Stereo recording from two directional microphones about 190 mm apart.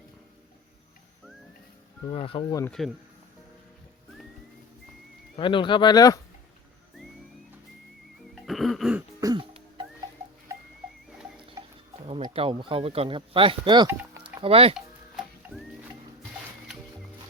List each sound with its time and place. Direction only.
2.0 s speech: 30° left (ahead or behind)
2.8 s speech: centre (ahead or behind)
5.4 s speech: 25° left (ahead or behind)
8.4 s music: centre (ahead or behind)
9.2 s music: 25° right (ahead or behind)
11.6 s stir: 15° right (ahead or behind)
12.0 s speech: 30° right (ahead or behind)
13.8 s music: 15° right (ahead or behind)
14.4 s speech: 30° right (ahead or behind)